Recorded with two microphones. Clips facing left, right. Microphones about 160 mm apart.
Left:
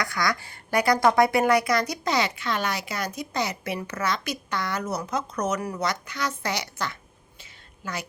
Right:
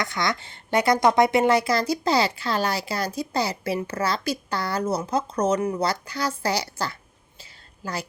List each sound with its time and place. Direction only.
0.0 s a woman's voice: 25° right (ahead or behind)